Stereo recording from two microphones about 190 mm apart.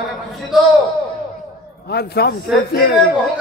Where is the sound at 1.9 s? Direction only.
55° left (ahead or behind).